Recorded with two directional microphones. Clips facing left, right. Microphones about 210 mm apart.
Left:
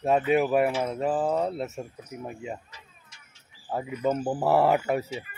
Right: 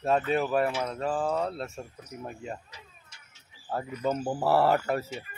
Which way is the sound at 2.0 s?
10° left (ahead or behind).